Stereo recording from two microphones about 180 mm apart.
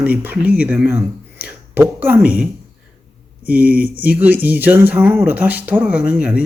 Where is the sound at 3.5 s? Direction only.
10° right (ahead or behind).